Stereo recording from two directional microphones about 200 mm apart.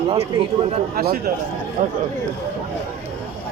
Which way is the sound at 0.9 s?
45° right (ahead or behind).